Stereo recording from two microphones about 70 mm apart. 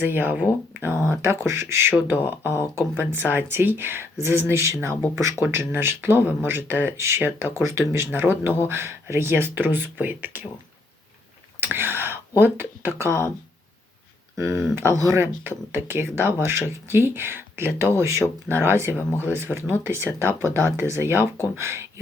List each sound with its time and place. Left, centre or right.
0.0 s speech: right
0.7 s a sound: right
1.2 s speech: right
7.6 s speech: right
8.2 s speech: right
11.6 s speech: right
14.3 s speech: right
15.2 s speech: right